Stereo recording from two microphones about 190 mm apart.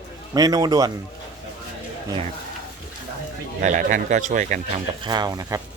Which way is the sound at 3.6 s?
45° right (ahead or behind).